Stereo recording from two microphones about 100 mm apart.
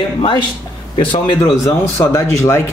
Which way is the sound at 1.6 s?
30° left (ahead or behind).